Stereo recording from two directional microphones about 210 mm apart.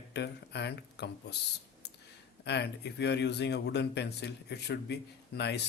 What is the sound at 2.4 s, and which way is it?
Speech, 55° left (ahead or behind).